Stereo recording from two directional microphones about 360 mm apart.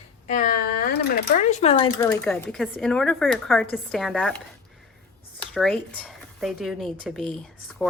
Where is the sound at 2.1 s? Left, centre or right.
Centre.